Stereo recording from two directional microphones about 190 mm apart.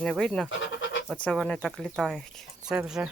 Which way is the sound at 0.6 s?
65° left (ahead or behind).